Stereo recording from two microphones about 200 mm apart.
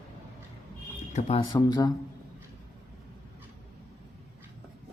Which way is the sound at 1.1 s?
30° left (ahead or behind).